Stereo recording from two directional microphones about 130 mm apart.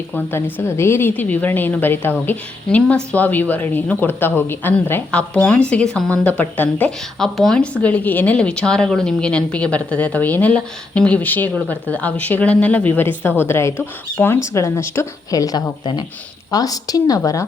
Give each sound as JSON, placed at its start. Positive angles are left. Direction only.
{"t": 0.1, "sound": "a woman's voice", "side_deg": 15}